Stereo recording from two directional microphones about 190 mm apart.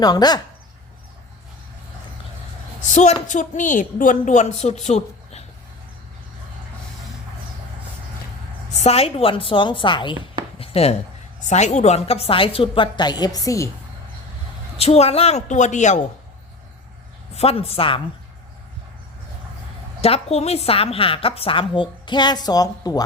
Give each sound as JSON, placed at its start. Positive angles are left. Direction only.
{"t": 0.0, "sound": "a woman's voice", "side_deg": 20}
{"t": 2.9, "sound": "a woman's voice", "side_deg": 40}
{"t": 8.8, "sound": "a woman's voice", "side_deg": 30}
{"t": 10.6, "sound": "a sound", "side_deg": 30}
{"t": 11.4, "sound": "a woman's voice", "side_deg": 35}
{"t": 14.8, "sound": "a woman's voice", "side_deg": 35}
{"t": 17.3, "sound": "a woman's voice", "side_deg": 30}
{"t": 20.0, "sound": "a woman's voice", "side_deg": 30}